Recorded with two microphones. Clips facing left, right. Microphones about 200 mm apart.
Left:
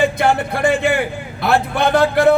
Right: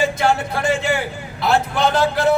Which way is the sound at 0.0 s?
55° left (ahead or behind).